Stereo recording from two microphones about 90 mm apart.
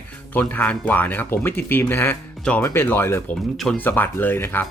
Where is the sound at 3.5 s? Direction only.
5° left (ahead or behind).